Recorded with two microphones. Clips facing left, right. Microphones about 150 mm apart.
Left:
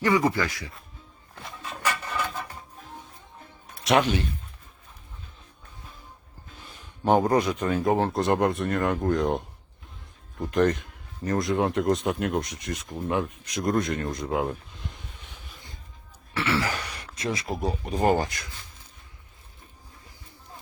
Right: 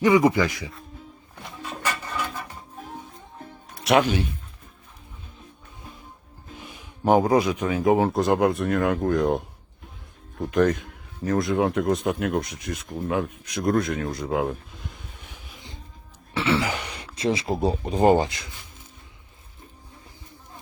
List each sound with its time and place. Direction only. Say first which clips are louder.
0.0 s speech: right 5 dB; 15° right (ahead or behind)
3.8 s speech: right 2 dB; centre (ahead or behind)
6.6 s speech: right 4 dB; 10° right (ahead or behind)
16.3 s throat clearing: right 3 dB; 20° right (ahead or behind)